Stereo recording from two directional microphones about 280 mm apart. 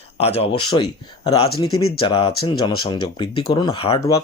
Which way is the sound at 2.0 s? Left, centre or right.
Centre.